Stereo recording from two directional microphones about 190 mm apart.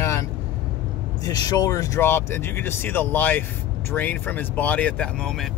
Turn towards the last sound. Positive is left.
turn(degrees=5)  # may be behind; listen again after turning